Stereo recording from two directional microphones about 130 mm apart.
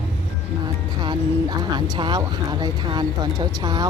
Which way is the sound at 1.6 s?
35° right (ahead or behind).